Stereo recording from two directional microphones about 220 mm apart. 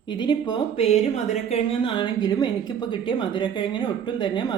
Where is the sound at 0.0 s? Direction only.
20° left (ahead or behind).